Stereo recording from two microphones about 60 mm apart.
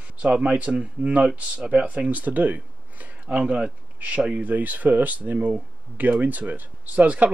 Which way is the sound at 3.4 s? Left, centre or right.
Centre.